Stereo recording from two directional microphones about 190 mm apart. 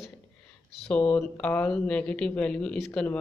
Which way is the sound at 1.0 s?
20° left (ahead or behind).